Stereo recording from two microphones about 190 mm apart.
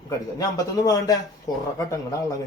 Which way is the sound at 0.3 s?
20° left (ahead or behind).